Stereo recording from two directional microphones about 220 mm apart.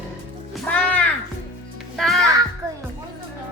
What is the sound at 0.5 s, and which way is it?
Music, 5° left (ahead or behind).